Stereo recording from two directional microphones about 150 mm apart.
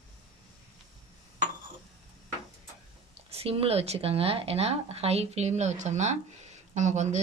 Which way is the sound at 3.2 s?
40° right (ahead or behind).